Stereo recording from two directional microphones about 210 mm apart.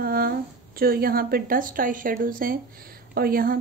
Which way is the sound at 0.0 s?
45° right (ahead or behind).